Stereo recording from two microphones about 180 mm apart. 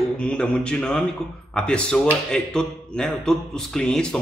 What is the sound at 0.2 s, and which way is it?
A man's voice, 5° left (ahead or behind).